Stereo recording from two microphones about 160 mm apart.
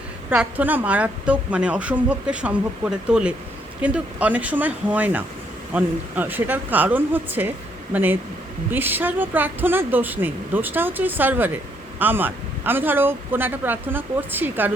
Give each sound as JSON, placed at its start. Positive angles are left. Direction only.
{"t": 0.3, "sound": "a woman's voice", "side_deg": -10}